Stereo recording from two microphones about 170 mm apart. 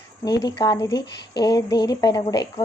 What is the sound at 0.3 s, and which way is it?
A woman's voice, 20° left (ahead or behind).